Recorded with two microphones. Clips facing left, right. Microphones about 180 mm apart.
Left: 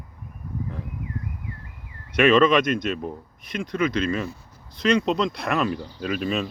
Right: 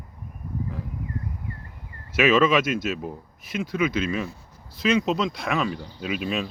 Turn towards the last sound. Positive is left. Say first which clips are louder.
# left 2 dB
turn(degrees=0)  # may be behind; listen again after turning